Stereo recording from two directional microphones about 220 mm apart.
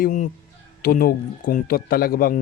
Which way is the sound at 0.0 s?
35° left (ahead or behind).